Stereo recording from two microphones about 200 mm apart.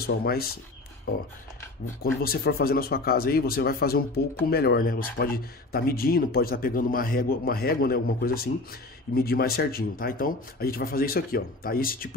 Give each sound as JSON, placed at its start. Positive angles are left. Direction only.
{"t": 0.0, "sound": "speech", "side_deg": 50}
{"t": 2.2, "sound": "speech", "side_deg": 50}